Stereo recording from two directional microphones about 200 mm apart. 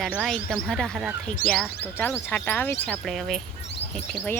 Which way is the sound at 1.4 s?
45° left (ahead or behind).